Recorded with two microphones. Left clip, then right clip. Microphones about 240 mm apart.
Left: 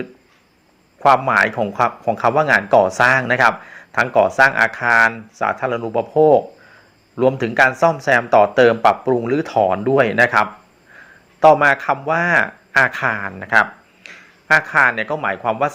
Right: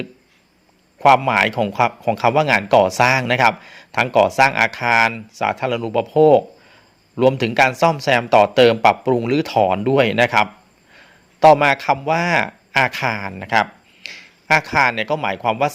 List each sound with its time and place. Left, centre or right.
0.9 s speech: right
14.1 s a sound: right
14.7 s speech: right